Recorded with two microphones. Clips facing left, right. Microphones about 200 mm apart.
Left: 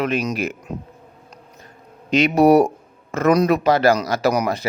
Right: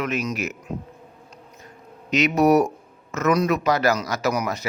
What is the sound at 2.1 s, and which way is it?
Speech, 30° left (ahead or behind).